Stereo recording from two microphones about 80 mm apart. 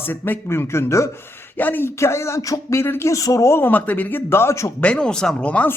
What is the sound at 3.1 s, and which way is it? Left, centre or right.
Speech, left.